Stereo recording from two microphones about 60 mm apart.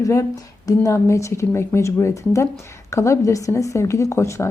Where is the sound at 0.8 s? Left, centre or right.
Left.